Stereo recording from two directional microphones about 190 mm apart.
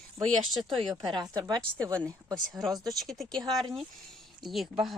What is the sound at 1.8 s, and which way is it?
A woman's voice, 5° left (ahead or behind).